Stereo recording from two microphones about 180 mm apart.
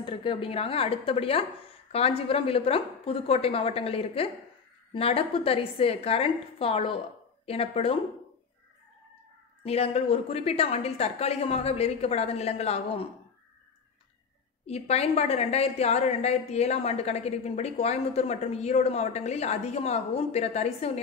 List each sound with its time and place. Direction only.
0.0 s a woman's voice: 30° left (ahead or behind)
9.6 s a woman's voice: 35° left (ahead or behind)
14.7 s a woman's voice: 35° left (ahead or behind)